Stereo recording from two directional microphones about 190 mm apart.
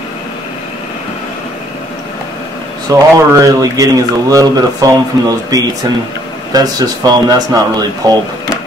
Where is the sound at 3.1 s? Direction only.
15° right (ahead or behind).